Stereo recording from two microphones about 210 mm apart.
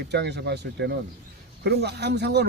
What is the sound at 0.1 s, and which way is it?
Speech, 55° right (ahead or behind).